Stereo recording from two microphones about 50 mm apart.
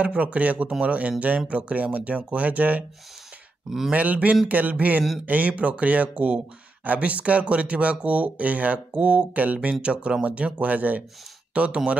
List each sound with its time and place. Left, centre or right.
0.0 s speech: right
3.9 s a sound: right
5.2 s speech: right